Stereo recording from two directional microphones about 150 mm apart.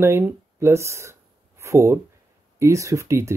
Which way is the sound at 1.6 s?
20° right (ahead or behind).